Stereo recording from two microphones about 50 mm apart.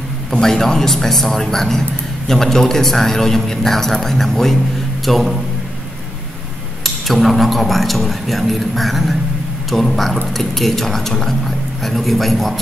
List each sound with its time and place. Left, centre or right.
0.3 s speech: centre
6.8 s speech: centre